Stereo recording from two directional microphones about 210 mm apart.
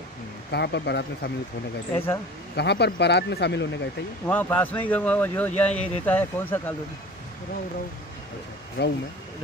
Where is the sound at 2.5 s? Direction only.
50° left (ahead or behind).